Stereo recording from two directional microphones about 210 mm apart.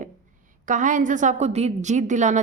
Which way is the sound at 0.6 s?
35° right (ahead or behind).